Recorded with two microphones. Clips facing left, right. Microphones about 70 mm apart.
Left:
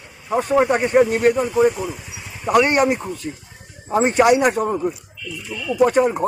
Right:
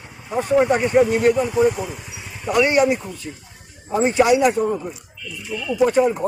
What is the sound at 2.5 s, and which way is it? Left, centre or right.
A man's voice, left.